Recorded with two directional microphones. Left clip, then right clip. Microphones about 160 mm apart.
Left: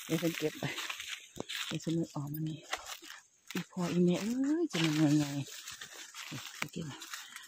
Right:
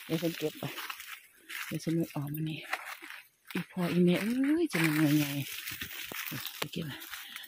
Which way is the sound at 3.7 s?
15° right (ahead or behind).